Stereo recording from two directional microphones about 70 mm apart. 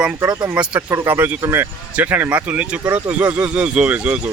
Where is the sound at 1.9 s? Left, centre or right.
Right.